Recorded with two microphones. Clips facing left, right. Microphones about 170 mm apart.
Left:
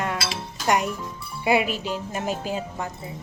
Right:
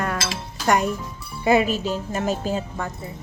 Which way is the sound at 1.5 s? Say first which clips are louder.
Right 3 dB; 10° left (ahead or behind).